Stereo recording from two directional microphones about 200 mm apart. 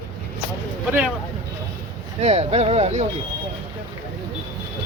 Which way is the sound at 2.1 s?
30° right (ahead or behind).